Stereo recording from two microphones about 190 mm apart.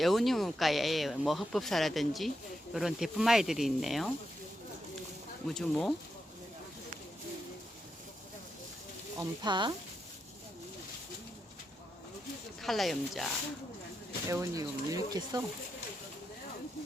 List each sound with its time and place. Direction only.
0.0 s speech: centre (ahead or behind)
5.5 s speech: 5° left (ahead or behind)
9.1 s speech: 25° right (ahead or behind)
12.6 s speech: centre (ahead or behind)
14.3 s speech: 15° right (ahead or behind)